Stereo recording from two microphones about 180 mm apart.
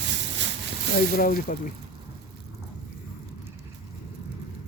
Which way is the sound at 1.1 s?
50° left (ahead or behind).